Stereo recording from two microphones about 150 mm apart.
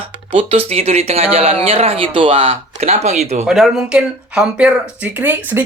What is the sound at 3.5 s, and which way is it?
Speech, centre (ahead or behind).